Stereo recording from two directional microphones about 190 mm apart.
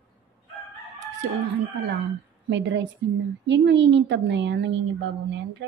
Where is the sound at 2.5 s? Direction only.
70° right (ahead or behind).